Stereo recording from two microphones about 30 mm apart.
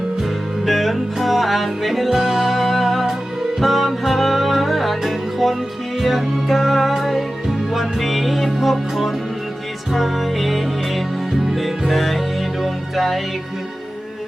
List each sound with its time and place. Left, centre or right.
0.2 s music: centre